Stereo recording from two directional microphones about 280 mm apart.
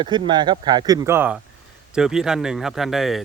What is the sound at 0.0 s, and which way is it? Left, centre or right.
Speech, centre.